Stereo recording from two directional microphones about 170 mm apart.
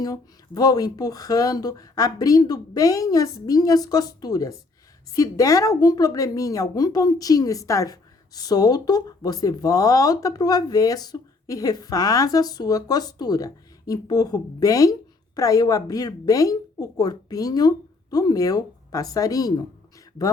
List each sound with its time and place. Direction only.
0.0 s speech: 20° left (ahead or behind)